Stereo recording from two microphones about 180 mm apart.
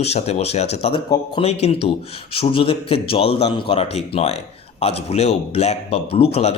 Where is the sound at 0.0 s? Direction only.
35° left (ahead or behind).